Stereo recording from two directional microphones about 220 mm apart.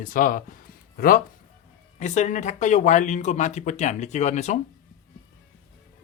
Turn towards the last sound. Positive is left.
turn(degrees=30)  # may be behind; listen again after turning